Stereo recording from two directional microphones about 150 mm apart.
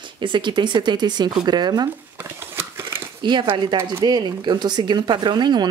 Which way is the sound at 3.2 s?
35° right (ahead or behind).